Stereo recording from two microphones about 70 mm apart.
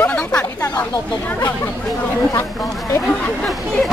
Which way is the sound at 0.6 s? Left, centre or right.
Left.